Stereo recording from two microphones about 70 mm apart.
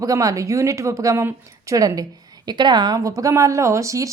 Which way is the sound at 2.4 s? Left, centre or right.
Right.